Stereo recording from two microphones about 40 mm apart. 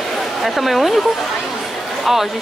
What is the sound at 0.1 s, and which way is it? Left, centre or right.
A woman's voice, centre.